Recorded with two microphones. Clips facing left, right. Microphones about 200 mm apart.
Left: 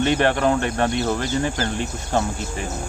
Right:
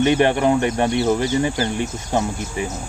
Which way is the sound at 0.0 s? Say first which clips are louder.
Right 3 dB; 15° right (ahead or behind).